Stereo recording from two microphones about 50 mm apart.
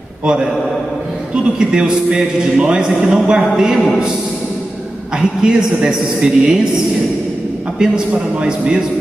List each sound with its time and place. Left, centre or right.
0.2 s a man's voice: centre
5.4 s a man's voice: centre
7.8 s a man's voice: centre